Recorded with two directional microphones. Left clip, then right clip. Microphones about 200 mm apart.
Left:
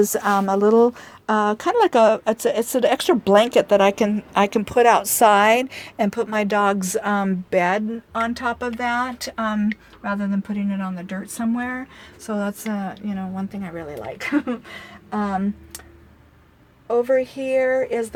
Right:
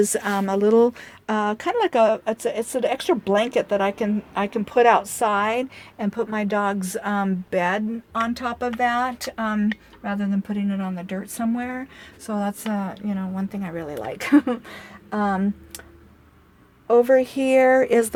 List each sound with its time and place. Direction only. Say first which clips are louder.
0.0 s speech: left 3 dB; 5° right (ahead or behind); by 6.7 s 40° left (ahead or behind)
6.7 s speech: left 3 dB; 20° left (ahead or behind); by 12.9 s 5° right (ahead or behind)
12.9 s speech: even; 20° right (ahead or behind)
16.8 s speech: right 3 dB; 45° right (ahead or behind)